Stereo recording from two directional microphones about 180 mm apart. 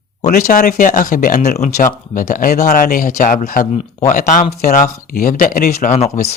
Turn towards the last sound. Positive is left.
turn(degrees=45)  # may be behind; listen again after turning